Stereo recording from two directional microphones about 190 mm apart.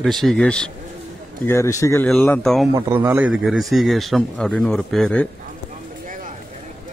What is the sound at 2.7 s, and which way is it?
A man's voice, 10° right (ahead or behind).